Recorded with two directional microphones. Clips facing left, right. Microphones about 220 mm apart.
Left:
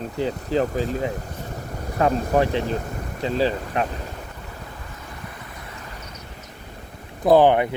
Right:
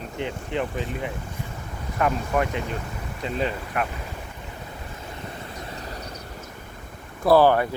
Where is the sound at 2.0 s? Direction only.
30° left (ahead or behind).